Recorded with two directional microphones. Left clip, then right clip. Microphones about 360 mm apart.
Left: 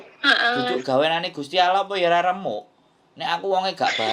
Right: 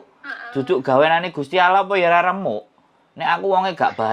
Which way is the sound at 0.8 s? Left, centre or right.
Centre.